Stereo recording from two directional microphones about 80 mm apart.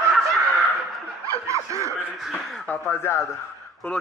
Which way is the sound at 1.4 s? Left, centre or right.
Right.